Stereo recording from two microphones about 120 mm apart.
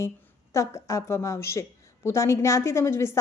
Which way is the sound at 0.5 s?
25° left (ahead or behind).